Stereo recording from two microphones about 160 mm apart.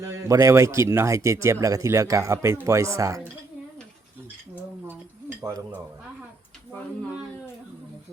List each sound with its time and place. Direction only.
0.1 s a man's voice: 20° right (ahead or behind)